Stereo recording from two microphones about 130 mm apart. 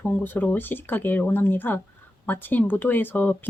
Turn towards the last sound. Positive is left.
turn(degrees=15)  # may be behind; listen again after turning